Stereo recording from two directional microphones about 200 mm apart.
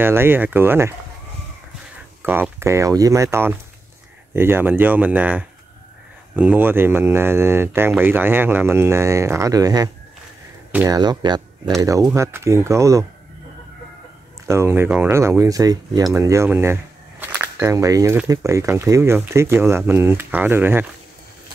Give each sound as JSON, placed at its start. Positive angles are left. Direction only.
{"t": 0.0, "sound": "speech", "side_deg": -10}
{"t": 2.2, "sound": "speech", "side_deg": -10}
{"t": 10.9, "sound": "speech", "side_deg": -20}
{"t": 14.5, "sound": "speech", "side_deg": -10}